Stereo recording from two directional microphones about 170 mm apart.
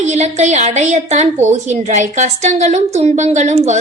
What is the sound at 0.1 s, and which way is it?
A woman's voice, 40° right (ahead or behind).